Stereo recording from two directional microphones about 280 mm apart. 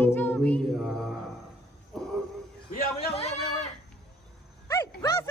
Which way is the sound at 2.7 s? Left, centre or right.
Left.